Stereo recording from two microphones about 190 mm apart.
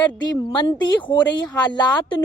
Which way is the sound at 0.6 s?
25° left (ahead or behind).